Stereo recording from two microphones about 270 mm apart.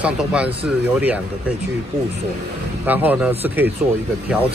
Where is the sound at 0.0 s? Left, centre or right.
Centre.